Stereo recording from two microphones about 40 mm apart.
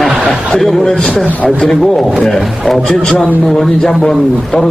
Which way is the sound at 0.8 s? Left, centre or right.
Centre.